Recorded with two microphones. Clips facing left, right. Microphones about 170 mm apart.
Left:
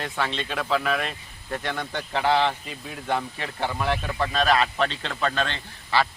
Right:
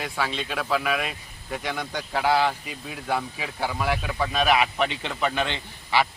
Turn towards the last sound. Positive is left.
turn(degrees=-15)  # may be behind; listen again after turning